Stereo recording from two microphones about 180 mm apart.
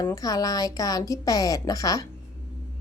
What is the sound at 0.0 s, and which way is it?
Speech, 20° left (ahead or behind).